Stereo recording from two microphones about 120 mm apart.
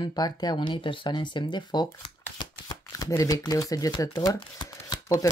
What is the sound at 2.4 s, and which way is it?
Speech, 30° left (ahead or behind).